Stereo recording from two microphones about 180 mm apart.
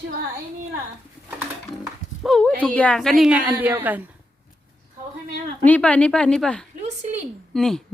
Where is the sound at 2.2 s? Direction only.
Centre (ahead or behind).